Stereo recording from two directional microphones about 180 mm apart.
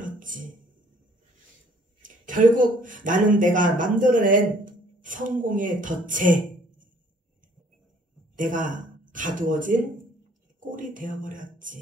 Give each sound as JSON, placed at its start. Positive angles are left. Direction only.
{"t": 0.0, "sound": "a sound", "side_deg": -45}
{"t": 2.0, "sound": "speech", "side_deg": -45}
{"t": 8.4, "sound": "speech", "side_deg": -45}
{"t": 10.7, "sound": "speech", "side_deg": -45}